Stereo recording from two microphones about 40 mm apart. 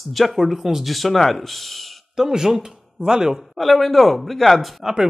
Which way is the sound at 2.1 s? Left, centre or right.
Centre.